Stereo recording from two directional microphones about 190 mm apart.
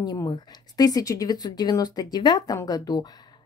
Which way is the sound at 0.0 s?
20° left (ahead or behind).